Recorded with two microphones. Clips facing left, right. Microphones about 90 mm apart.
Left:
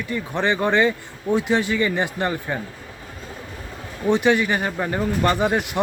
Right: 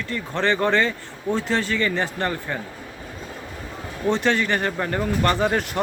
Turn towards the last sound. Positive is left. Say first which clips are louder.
# left 1 dB
turn(degrees=15)  # may be behind; listen again after turning